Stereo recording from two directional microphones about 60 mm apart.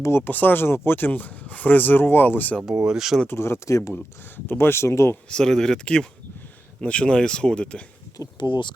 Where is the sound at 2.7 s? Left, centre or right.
Centre.